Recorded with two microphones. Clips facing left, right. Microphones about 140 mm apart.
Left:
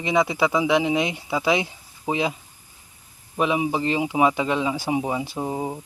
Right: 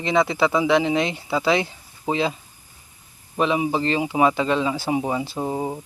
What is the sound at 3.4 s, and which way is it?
Speech, 10° left (ahead or behind).